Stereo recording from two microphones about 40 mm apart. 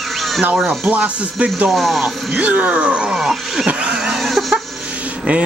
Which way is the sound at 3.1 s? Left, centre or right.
Centre.